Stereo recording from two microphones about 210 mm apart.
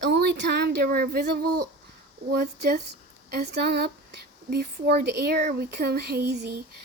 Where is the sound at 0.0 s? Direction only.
55° right (ahead or behind).